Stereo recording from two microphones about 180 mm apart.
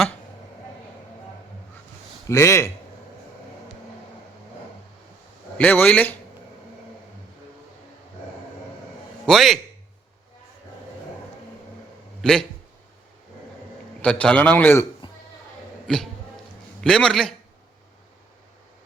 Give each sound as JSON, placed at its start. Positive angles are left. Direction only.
{"t": 2.2, "sound": "a man's voice", "side_deg": 15}
{"t": 5.5, "sound": "a man's voice", "side_deg": 10}
{"t": 9.2, "sound": "a man's voice", "side_deg": 0}
{"t": 12.2, "sound": "a man's voice", "side_deg": 5}
{"t": 14.0, "sound": "a man's voice", "side_deg": 5}
{"t": 15.9, "sound": "a man's voice", "side_deg": 5}